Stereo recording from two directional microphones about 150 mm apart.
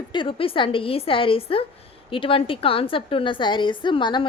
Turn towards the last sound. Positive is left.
turn(degrees=30)  # may be behind; listen again after turning